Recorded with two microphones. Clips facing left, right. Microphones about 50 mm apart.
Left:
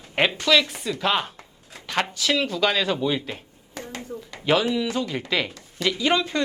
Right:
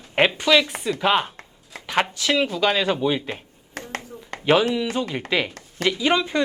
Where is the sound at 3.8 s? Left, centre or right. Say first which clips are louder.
Right 1 dB; right.